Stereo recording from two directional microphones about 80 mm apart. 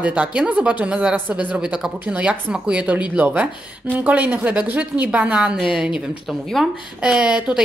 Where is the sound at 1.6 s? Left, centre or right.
Centre.